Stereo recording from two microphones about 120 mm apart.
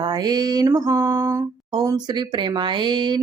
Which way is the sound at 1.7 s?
35° right (ahead or behind).